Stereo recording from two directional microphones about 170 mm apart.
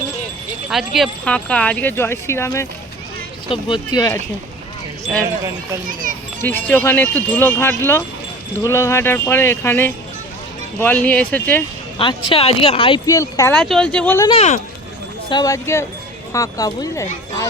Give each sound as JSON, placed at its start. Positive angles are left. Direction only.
{"t": 0.7, "sound": "speech", "side_deg": 0}
{"t": 3.5, "sound": "speech", "side_deg": 25}
{"t": 5.9, "sound": "a child's voice", "side_deg": -55}
{"t": 6.4, "sound": "speech", "side_deg": 10}
{"t": 11.9, "sound": "speech", "side_deg": 30}
{"t": 13.1, "sound": "speech", "side_deg": 20}
{"t": 13.6, "sound": "speech", "side_deg": 5}
{"t": 14.3, "sound": "speech", "side_deg": 40}
{"t": 15.3, "sound": "speech", "side_deg": 20}